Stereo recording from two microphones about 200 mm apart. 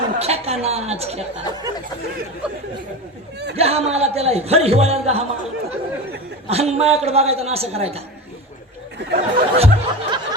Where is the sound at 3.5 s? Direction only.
30° right (ahead or behind).